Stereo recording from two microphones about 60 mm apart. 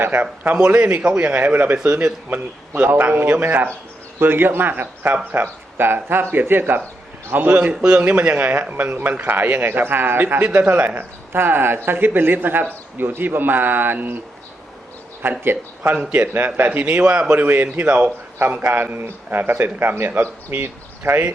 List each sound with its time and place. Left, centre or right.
0.0 s a man's voice: right
0.5 s a man's voice: right
7.7 s a man's voice: centre; by 14.2 s right
15.2 s a man's voice: right